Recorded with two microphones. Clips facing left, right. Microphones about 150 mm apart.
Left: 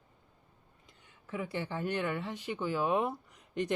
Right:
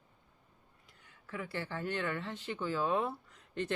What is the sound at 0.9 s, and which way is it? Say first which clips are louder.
Speech: left 4 dB; 20° left (ahead or behind).